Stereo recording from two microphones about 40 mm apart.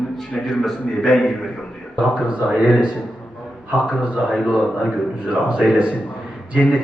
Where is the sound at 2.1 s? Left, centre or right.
Right.